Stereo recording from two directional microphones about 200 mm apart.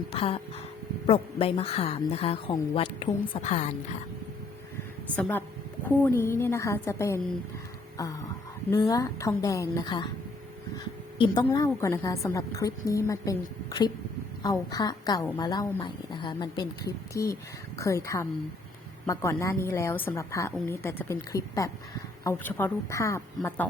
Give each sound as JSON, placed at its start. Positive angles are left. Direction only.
{"t": 0.1, "sound": "speech", "side_deg": 30}
{"t": 5.9, "sound": "a woman's voice", "side_deg": 10}
{"t": 7.9, "sound": "a sound", "side_deg": 15}
{"t": 8.7, "sound": "a woman's voice", "side_deg": 15}
{"t": 11.2, "sound": "a woman's voice", "side_deg": 20}